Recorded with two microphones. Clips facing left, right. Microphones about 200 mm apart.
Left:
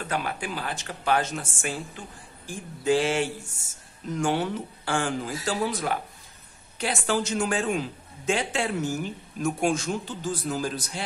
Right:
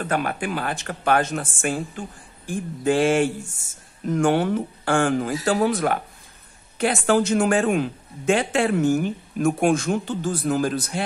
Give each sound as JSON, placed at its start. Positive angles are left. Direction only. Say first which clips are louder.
{"t": 0.1, "sound": "a man's voice", "louder": "right 5 dB", "side_deg": -55}
{"t": 2.8, "sound": "mantra", "louder": "right 4 dB", "side_deg": -55}
{"t": 4.1, "sound": "a man's voice", "louder": "right 6 dB", "side_deg": -55}